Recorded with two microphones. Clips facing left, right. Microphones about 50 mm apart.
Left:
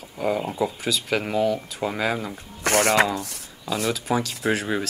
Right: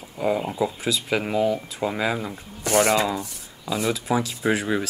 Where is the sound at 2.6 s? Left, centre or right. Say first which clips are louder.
Left 1 dB; left.